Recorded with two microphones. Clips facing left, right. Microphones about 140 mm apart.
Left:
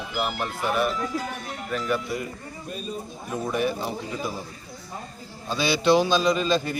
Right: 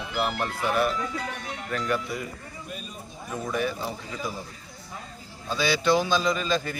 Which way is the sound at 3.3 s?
20° left (ahead or behind).